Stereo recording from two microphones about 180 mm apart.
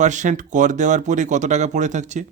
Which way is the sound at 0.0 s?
45° right (ahead or behind).